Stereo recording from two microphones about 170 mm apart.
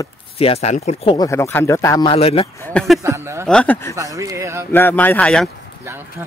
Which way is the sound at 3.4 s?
5° left (ahead or behind).